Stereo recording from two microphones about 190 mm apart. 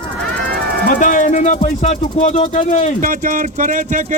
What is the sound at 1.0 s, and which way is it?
Speech, 40° left (ahead or behind).